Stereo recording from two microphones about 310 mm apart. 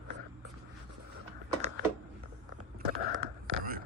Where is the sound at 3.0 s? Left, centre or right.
Right.